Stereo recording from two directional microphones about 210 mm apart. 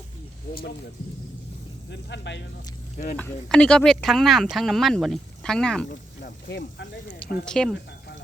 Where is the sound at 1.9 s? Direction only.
55° left (ahead or behind).